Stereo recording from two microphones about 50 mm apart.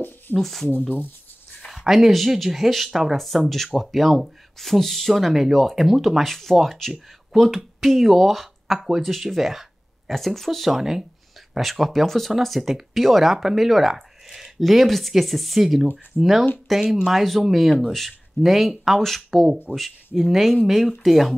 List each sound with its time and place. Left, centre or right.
0.4 s speech: centre
0.7 s speech: left
1.7 s speech: centre